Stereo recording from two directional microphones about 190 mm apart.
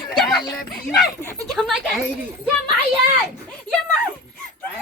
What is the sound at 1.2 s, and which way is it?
Speech, 15° right (ahead or behind).